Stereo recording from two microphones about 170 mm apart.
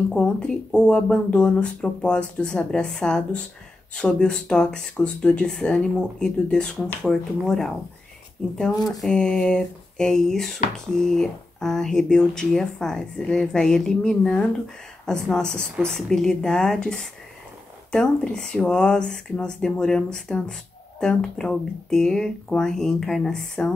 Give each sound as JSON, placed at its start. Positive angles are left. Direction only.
{"t": 0.1, "sound": "speech", "side_deg": 5}